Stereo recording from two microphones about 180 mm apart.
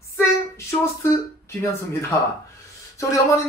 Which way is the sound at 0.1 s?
15° left (ahead or behind).